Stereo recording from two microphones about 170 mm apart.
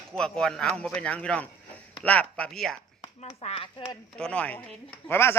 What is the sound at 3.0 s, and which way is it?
Speech, 40° left (ahead or behind).